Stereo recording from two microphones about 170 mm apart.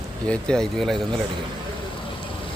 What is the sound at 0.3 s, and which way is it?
Speech, 5° left (ahead or behind).